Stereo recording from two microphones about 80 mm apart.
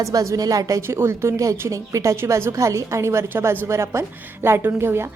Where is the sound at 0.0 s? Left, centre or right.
Right.